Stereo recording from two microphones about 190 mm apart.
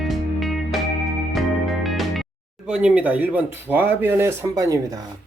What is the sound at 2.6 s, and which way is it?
Speech, 5° right (ahead or behind).